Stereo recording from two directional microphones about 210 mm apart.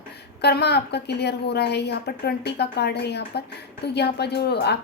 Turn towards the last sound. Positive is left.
turn(degrees=50)  # may be behind; listen again after turning